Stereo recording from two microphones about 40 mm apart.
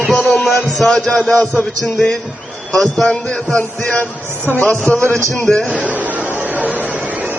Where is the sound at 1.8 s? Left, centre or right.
Centre.